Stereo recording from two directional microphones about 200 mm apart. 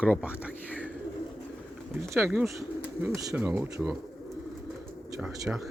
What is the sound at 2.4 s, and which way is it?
Speech, centre (ahead or behind).